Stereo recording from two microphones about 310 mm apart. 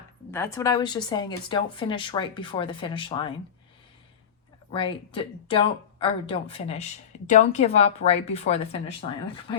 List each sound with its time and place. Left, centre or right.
0.3 s speech: centre
4.7 s speech: centre